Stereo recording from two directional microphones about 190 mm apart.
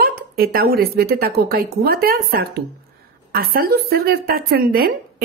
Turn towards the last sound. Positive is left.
turn(degrees=-50)  # may be behind; listen again after turning